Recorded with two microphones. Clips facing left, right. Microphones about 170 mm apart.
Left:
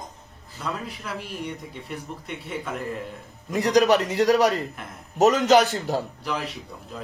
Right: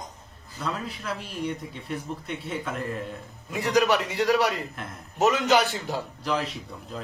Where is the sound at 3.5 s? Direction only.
40° left (ahead or behind).